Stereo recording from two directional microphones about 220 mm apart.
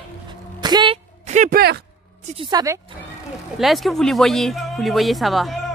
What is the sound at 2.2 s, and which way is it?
Speech, 25° right (ahead or behind).